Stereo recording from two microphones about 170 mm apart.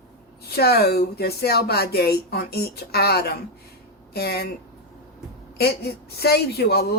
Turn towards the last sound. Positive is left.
turn(degrees=70)  # may be behind; listen again after turning